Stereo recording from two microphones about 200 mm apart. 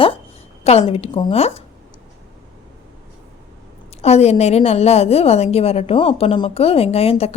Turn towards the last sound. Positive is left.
turn(degrees=30)  # may be behind; listen again after turning